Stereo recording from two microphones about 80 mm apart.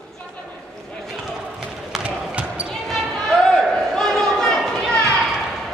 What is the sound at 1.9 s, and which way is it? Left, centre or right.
Basketball bounce, centre.